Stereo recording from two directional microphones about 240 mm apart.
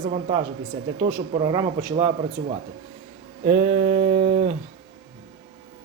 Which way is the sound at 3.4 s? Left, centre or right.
Right.